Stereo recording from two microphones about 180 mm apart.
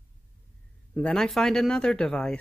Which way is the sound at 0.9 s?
5° left (ahead or behind).